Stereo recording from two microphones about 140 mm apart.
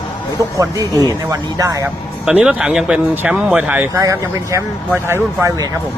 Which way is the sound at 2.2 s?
5° right (ahead or behind).